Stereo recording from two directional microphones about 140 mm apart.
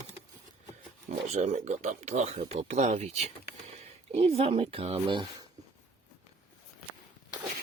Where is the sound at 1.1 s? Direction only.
55° right (ahead or behind); by 5.4 s 35° right (ahead or behind).